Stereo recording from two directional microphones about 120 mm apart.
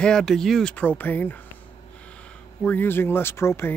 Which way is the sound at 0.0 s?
5° left (ahead or behind).